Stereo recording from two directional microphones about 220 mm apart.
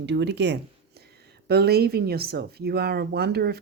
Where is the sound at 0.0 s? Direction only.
50° right (ahead or behind).